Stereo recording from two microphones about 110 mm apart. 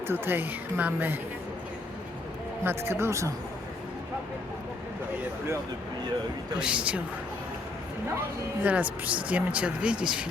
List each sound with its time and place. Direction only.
0.1 s speech: 15° right (ahead or behind)
2.6 s speech: 20° right (ahead or behind)
6.6 s speech: 10° right (ahead or behind)
8.6 s speech: 15° right (ahead or behind)